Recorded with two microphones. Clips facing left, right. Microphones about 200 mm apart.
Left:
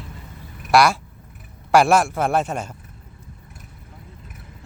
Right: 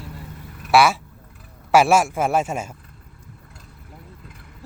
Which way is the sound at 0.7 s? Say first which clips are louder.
Even; 5° right (ahead or behind).